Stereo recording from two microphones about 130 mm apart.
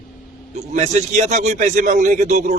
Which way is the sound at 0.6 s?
60° right (ahead or behind).